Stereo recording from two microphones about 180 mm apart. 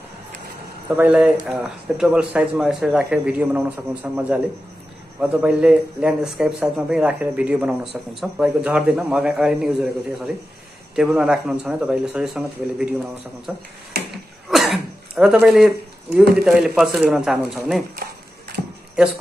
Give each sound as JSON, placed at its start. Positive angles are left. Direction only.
{"t": 0.8, "sound": "a man's voice", "side_deg": -10}
{"t": 13.9, "sound": "a sound", "side_deg": -60}
{"t": 14.5, "sound": "speech", "side_deg": 0}